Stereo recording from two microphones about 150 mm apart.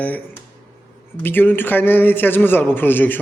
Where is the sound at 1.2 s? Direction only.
15° left (ahead or behind).